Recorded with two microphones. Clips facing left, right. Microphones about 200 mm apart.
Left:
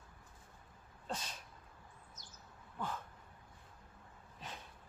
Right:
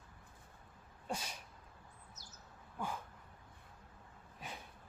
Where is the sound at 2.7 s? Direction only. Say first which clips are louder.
Even; 10° right (ahead or behind).